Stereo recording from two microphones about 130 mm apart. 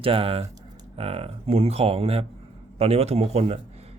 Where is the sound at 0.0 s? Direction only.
45° right (ahead or behind).